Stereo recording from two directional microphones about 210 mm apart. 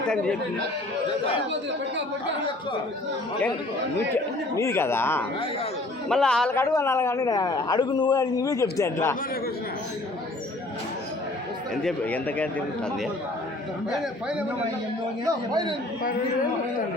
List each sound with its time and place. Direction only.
3.9 s a man's voice: 10° left (ahead or behind)
11.7 s a man's voice: 5° left (ahead or behind)
13.9 s a man's voice: 5° right (ahead or behind)
15.2 s a man's voice: 20° right (ahead or behind)